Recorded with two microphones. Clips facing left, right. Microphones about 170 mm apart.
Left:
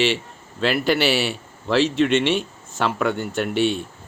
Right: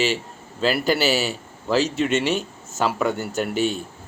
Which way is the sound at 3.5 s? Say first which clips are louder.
Left 3 dB; 40° right (ahead or behind).